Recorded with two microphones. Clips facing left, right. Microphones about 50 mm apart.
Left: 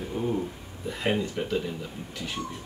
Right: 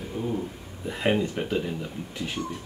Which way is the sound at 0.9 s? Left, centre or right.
Centre.